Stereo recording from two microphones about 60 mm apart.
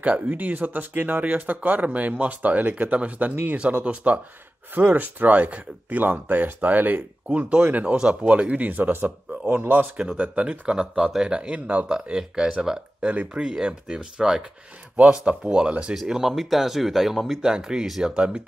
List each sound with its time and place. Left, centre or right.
0.0 s speech: right
9.9 s speech: centre
10.8 s speech: centre
15.0 s speech: right